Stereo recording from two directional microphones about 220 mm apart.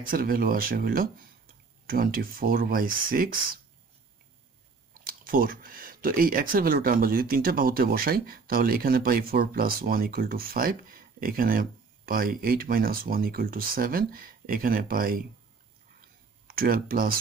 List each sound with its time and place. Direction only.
0.0 s speech: 40° right (ahead or behind)
5.0 s speech: 40° right (ahead or behind)
16.4 s speech: 40° right (ahead or behind)